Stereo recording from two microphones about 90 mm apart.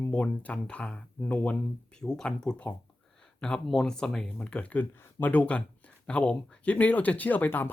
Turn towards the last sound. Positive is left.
turn(degrees=20)  # may be behind; listen again after turning